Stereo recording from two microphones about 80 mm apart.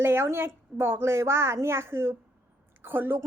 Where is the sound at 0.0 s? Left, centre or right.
Right.